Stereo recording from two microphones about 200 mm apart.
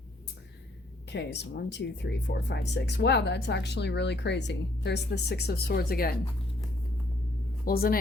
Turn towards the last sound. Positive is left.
turn(degrees=45)  # may be behind; listen again after turning